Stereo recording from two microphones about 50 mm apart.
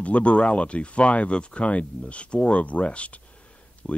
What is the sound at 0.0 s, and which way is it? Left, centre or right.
Speech, left.